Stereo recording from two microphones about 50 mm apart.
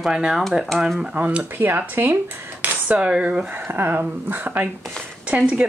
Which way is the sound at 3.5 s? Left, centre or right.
Right.